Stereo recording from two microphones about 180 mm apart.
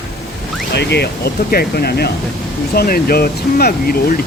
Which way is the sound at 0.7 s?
70° left (ahead or behind).